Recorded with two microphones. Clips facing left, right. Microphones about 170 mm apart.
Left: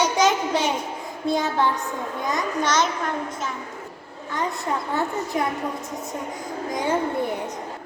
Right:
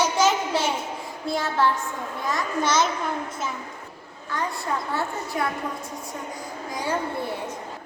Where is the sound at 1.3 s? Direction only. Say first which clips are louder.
Left 1 dB; 20° left (ahead or behind).